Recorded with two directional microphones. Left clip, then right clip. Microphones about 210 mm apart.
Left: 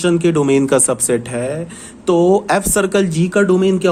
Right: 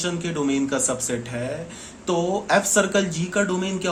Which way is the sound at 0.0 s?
50° left (ahead or behind).